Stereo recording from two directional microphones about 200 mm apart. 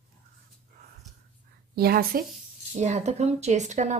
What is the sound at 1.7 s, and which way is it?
Speech, 50° right (ahead or behind).